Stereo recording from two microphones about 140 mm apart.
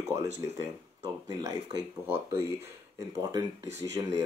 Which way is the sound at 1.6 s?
40° right (ahead or behind).